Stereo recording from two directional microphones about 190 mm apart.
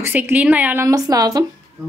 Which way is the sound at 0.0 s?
10° right (ahead or behind).